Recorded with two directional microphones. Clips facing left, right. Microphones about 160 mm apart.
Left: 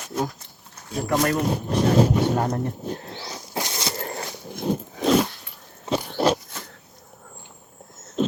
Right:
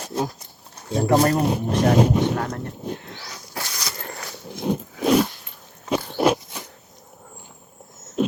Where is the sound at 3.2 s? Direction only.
25° left (ahead or behind).